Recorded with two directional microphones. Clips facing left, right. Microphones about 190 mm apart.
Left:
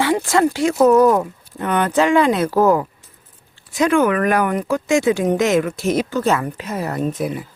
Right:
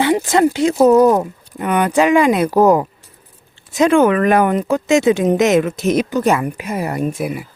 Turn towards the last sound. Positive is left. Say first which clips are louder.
# right 1 dB
turn(degrees=-10)  # may be behind; listen again after turning